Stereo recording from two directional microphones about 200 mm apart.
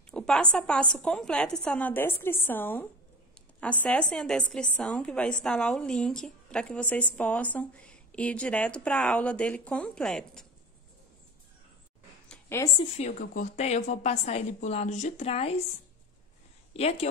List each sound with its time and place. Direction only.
0.1 s a woman's voice: 5° left (ahead or behind)
12.3 s a sound: 10° left (ahead or behind)
12.7 s a woman's voice: 30° left (ahead or behind)
16.7 s a woman's voice: 30° left (ahead or behind)